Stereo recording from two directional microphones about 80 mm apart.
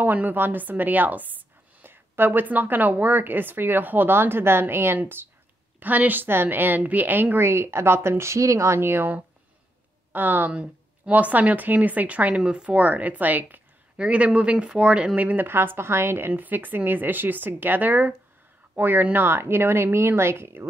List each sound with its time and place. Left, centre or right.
0.0 s a woman's voice: right